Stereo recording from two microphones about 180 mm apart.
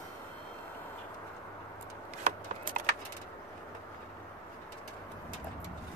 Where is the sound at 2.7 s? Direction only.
50° right (ahead or behind).